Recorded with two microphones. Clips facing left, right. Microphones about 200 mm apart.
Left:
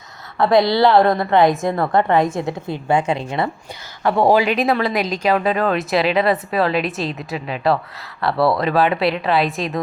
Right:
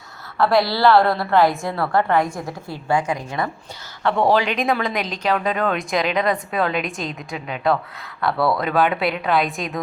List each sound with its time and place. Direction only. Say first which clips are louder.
0.3 s a woman's voice: left 4 dB; 20° left (ahead or behind)
4.0 s speech: left 3 dB; 10° left (ahead or behind)